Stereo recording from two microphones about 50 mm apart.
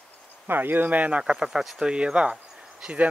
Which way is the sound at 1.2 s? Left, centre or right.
Centre.